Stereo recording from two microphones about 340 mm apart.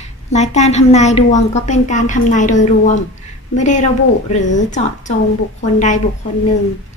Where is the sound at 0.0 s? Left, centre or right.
Centre.